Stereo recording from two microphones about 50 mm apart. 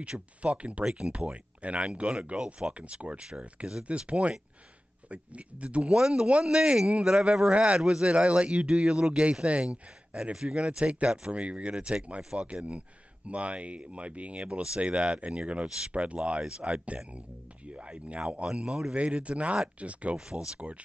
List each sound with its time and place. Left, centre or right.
0.0 s speech: right
3.3 s speech: centre
5.9 s speech: centre
7.5 s speech: right
7.8 s speech: centre
8.1 s speech: right
18.5 s speech: centre
18.9 s speech: right
20.2 s speech: centre